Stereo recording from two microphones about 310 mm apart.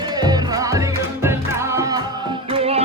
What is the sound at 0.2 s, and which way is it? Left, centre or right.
Music, centre.